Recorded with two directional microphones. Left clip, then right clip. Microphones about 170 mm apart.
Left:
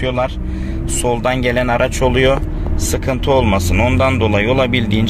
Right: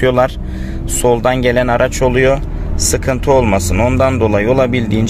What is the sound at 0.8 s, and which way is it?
Speech, 25° right (ahead or behind).